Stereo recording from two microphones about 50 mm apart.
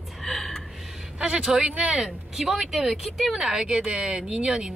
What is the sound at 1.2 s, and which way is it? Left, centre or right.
Speech, centre.